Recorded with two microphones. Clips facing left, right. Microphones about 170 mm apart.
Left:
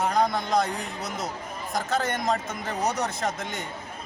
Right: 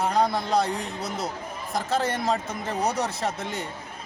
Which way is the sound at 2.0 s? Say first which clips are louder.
Right 2 dB; 35° right (ahead or behind).